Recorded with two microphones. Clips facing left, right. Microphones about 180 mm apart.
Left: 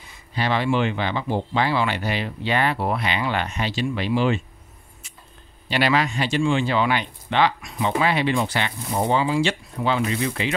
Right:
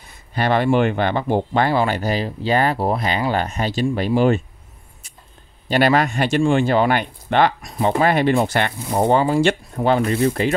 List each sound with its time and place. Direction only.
0.0 s speech: 50° right (ahead or behind)
5.7 s speech: 50° right (ahead or behind)